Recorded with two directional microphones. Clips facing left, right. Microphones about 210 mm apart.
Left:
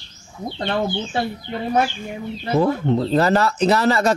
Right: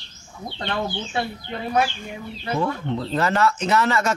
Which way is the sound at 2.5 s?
35° left (ahead or behind).